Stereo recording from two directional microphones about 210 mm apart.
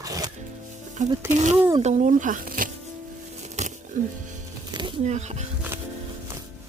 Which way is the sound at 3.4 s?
35° right (ahead or behind).